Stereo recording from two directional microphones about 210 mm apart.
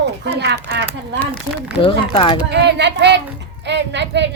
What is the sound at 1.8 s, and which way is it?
Speech, 25° left (ahead or behind).